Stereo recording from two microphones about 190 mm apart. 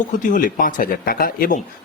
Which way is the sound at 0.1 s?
45° left (ahead or behind).